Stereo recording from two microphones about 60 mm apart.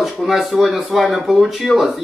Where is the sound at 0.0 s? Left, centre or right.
Centre.